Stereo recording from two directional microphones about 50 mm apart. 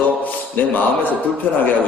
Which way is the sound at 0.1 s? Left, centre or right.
Left.